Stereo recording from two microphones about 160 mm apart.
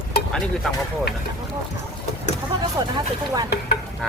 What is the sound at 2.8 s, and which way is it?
Speech, 25° right (ahead or behind).